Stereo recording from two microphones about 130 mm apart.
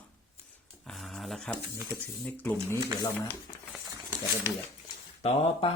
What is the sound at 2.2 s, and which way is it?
Speech, 15° left (ahead or behind).